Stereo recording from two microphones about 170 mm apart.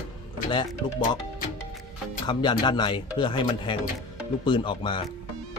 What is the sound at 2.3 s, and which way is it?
Speech, 25° left (ahead or behind).